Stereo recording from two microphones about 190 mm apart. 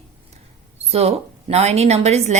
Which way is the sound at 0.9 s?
30° right (ahead or behind).